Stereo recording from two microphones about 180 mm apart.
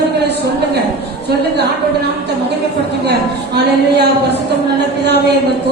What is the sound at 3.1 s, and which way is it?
Speech, 65° right (ahead or behind).